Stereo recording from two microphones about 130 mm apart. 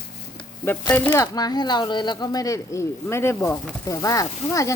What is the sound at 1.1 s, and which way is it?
Speech, 25° left (ahead or behind).